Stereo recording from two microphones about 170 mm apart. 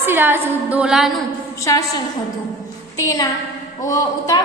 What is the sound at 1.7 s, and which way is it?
Speech, 20° left (ahead or behind).